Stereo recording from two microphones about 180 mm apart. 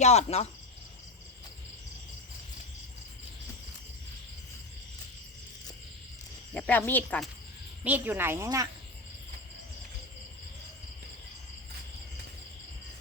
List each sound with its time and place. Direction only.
0.0 s cricket: 35° left (ahead or behind)
6.5 s speech: 10° left (ahead or behind)
7.9 s speech: 10° right (ahead or behind)